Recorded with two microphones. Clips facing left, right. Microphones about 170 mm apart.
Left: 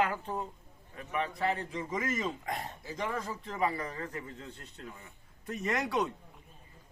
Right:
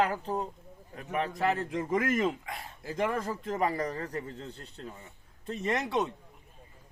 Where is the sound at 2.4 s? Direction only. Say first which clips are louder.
Left 4 dB; 40° left (ahead or behind).